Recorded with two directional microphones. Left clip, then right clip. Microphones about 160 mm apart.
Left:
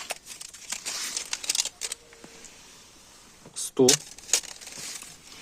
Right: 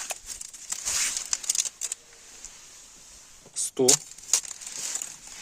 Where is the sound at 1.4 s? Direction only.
15° right (ahead or behind).